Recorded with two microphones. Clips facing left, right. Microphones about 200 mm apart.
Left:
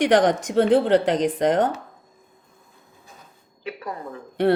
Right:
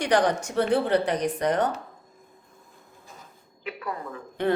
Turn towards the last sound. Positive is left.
turn(degrees=35)  # may be behind; listen again after turning